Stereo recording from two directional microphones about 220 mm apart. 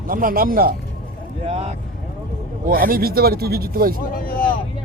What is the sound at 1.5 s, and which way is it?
Speech, 25° right (ahead or behind).